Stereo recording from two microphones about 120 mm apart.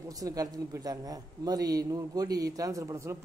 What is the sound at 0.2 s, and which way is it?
Speech, 30° right (ahead or behind).